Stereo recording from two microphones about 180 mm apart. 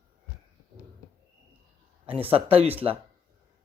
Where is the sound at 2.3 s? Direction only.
30° right (ahead or behind).